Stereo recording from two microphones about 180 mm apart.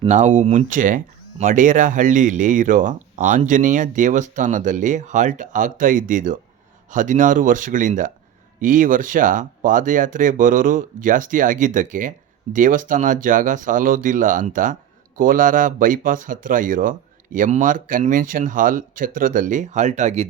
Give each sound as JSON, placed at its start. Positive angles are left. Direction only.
{"t": 0.1, "sound": "speech", "side_deg": -40}